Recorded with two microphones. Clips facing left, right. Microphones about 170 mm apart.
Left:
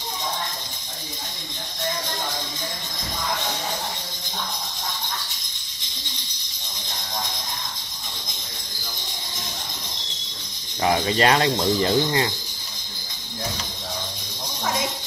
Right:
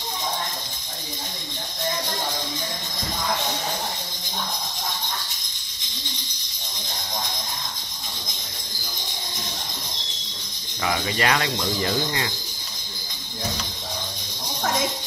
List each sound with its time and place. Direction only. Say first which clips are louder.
10.8 s speech: left 5 dB; 35° left (ahead or behind)